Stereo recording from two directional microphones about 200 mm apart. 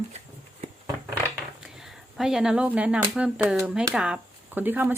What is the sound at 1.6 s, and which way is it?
Speech, centre (ahead or behind).